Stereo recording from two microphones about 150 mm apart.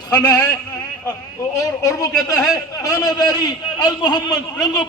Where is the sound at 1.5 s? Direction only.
20° left (ahead or behind).